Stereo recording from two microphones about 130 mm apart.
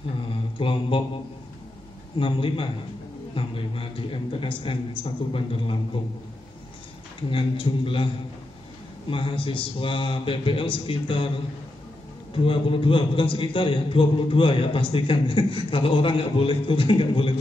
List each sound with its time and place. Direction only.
0.3 s mantra: 45° left (ahead or behind)
2.1 s a man's voice: 45° left (ahead or behind)
7.2 s a man's voice: 40° left (ahead or behind)
9.1 s a man's voice: 40° left (ahead or behind)
12.4 s a man's voice: 45° left (ahead or behind)